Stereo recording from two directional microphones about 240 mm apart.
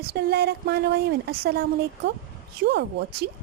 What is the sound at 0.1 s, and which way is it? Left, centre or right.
Speech, right.